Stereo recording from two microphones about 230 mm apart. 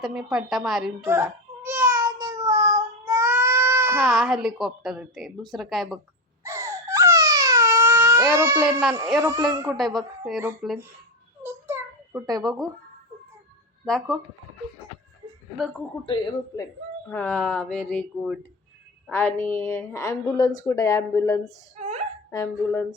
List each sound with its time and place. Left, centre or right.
0.0 s baby cry: centre
5.5 s speech: centre
6.4 s wail: centre
9.1 s speech: centre
9.7 s speech: centre
11.4 s a sound: centre
13.8 s speech: centre
16.0 s a woman's voice: centre
17.1 s a woman's voice: centre
21.8 s a sound: right
22.3 s a woman's voice: centre